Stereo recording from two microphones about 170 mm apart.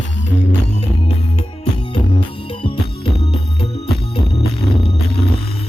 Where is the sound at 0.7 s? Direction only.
40° left (ahead or behind).